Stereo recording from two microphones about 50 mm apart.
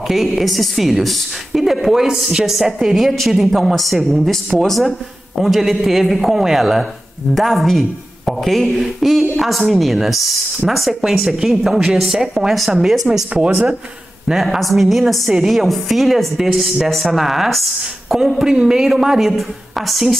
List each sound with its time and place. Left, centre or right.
0.1 s a woman's voice: centre
13.3 s speech: right
14.2 s a woman's voice: centre
18.4 s a woman's voice: centre